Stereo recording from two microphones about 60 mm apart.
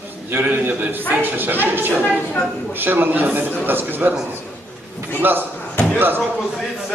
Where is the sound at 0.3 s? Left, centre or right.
Right.